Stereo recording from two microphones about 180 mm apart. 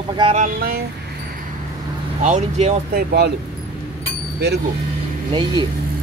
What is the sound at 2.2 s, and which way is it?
Speech, 45° right (ahead or behind).